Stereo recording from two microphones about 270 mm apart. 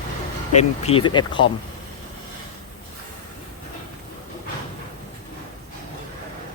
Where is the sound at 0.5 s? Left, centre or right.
Left.